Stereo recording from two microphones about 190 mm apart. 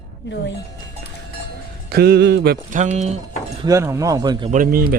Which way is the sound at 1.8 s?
55° right (ahead or behind).